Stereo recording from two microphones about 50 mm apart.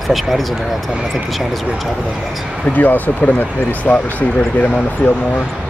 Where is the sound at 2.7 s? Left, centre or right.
Left.